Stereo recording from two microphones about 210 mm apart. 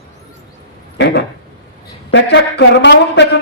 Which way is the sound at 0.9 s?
55° left (ahead or behind).